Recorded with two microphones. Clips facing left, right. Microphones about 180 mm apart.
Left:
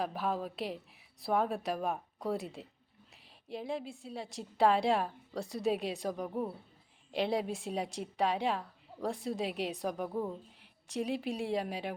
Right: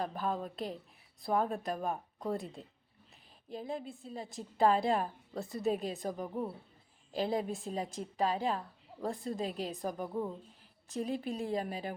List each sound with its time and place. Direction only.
0.0 s a woman's voice: 5° left (ahead or behind)
7.8 s a woman's voice: 80° left
8.4 s a woman's voice: centre (ahead or behind)